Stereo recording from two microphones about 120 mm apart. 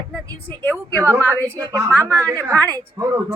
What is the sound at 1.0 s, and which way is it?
Speech, 25° right (ahead or behind).